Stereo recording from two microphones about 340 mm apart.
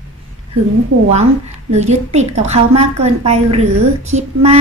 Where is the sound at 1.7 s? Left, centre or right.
Centre.